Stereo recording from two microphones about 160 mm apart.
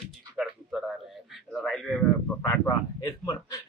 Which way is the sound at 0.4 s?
5° right (ahead or behind).